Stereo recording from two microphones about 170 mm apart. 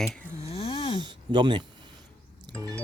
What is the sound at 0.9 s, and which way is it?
Speech, 25° right (ahead or behind).